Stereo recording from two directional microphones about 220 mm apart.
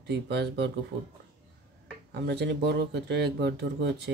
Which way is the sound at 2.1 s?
50° right (ahead or behind).